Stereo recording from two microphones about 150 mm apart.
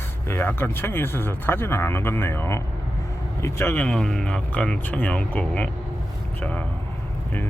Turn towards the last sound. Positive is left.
turn(degrees=10)  # may be behind; listen again after turning